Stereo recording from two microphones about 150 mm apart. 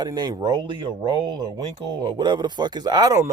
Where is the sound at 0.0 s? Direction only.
25° right (ahead or behind).